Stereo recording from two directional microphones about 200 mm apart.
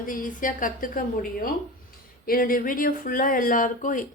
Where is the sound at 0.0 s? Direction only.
45° left (ahead or behind).